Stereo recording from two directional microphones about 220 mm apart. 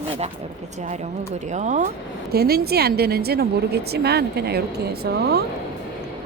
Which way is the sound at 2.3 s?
45° right (ahead or behind).